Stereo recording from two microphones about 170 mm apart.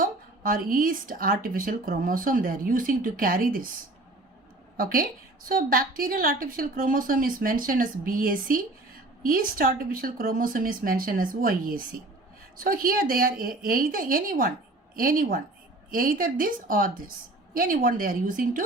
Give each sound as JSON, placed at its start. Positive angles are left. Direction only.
{"t": 0.0, "sound": "a woman's voice", "side_deg": -55}
{"t": 4.8, "sound": "a woman's voice", "side_deg": -55}